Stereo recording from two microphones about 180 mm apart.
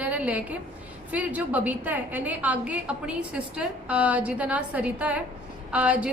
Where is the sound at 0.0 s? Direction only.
10° right (ahead or behind).